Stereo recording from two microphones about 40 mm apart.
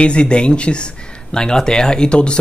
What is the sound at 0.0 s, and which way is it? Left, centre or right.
A man's voice, left.